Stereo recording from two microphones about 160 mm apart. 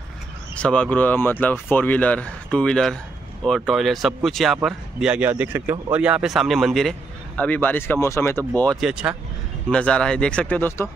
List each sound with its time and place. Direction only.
0.6 s speech: 5° left (ahead or behind)
8.7 s speech: 5° right (ahead or behind)
9.7 s speech: 5° left (ahead or behind)